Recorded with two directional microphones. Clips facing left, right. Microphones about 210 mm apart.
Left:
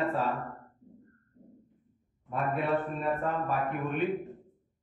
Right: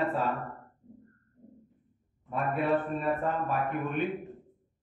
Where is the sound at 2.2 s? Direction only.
Centre (ahead or behind).